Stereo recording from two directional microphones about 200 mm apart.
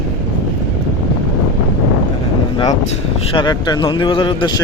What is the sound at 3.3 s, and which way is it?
Speech, 25° left (ahead or behind).